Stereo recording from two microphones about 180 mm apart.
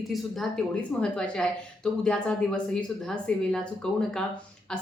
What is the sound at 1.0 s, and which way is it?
A woman's voice, 5° left (ahead or behind).